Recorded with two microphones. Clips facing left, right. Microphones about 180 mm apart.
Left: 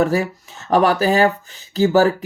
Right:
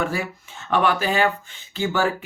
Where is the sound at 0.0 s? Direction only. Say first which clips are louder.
Left 8 dB; 40° left (ahead or behind).